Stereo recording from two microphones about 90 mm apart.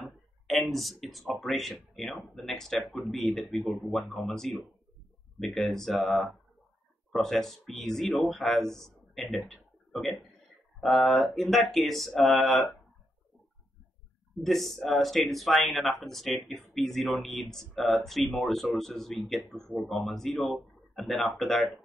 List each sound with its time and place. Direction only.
0.0 s speech: centre (ahead or behind)
14.4 s speech: 5° left (ahead or behind)